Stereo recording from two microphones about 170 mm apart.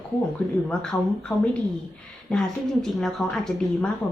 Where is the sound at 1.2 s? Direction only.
5° left (ahead or behind).